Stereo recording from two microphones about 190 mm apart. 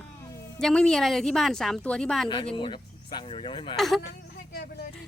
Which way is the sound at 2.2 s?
25° left (ahead or behind).